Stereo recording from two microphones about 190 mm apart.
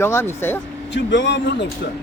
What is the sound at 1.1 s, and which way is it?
Speech, 65° left (ahead or behind).